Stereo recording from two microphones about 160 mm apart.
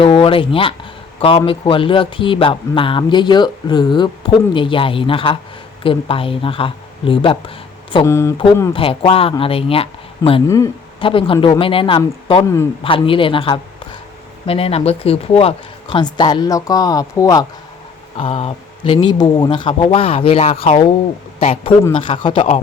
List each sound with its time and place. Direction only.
0.0 s speech: 35° left (ahead or behind)
8.0 s speech: 15° left (ahead or behind)
8.7 s speech: 35° left (ahead or behind)
10.4 s speech: 20° left (ahead or behind)
11.0 s speech: 35° left (ahead or behind)
18.2 s a man's voice: 35° left (ahead or behind)